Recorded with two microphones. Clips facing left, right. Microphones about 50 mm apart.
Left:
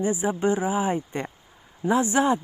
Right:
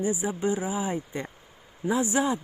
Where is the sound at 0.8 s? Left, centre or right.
Left.